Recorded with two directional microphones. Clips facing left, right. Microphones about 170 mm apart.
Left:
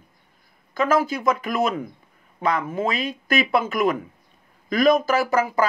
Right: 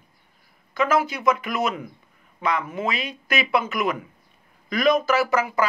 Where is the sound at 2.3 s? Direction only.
45° left (ahead or behind).